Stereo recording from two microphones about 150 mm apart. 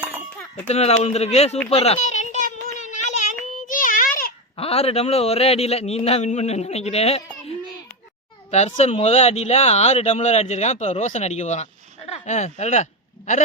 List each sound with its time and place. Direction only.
0.7 s speech: 45° left (ahead or behind)
2.8 s child singing: 55° left (ahead or behind)
4.5 s speech: 40° left (ahead or behind)
8.4 s speech: 50° left (ahead or behind)